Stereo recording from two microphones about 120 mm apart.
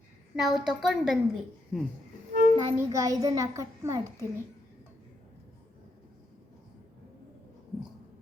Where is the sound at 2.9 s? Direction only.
30° right (ahead or behind).